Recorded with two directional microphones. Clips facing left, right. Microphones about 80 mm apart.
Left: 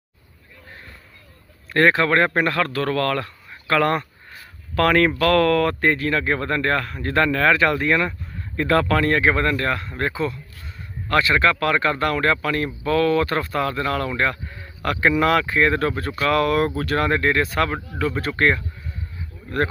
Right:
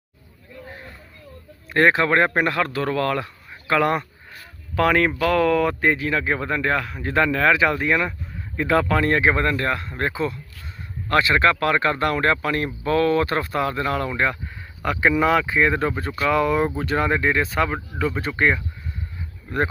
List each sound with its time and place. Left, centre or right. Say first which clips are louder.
1.7 s speech: even; right; by 18.6 s centre